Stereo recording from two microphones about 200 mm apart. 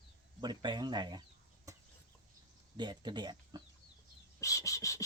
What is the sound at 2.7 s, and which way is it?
Speech, 20° right (ahead or behind).